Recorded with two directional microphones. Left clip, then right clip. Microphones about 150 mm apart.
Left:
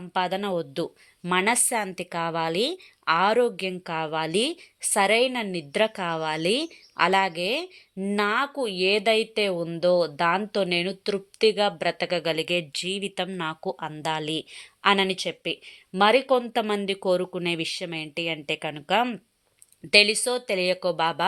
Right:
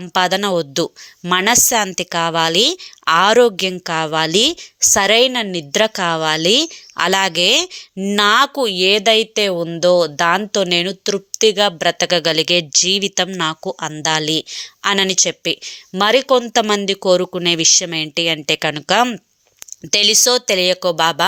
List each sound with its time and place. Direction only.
0.0 s a woman's voice: 40° right (ahead or behind)
20.6 s a woman's voice: 30° right (ahead or behind)